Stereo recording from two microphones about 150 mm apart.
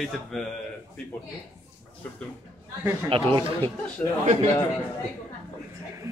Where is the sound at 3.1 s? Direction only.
35° right (ahead or behind).